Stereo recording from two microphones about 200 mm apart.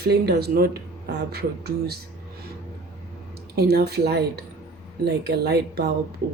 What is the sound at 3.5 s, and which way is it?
Speech, 50° right (ahead or behind).